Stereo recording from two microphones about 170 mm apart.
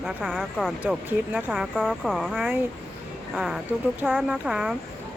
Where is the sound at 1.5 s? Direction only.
Centre (ahead or behind).